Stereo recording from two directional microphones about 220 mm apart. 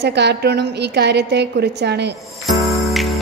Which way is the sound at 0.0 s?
50° right (ahead or behind).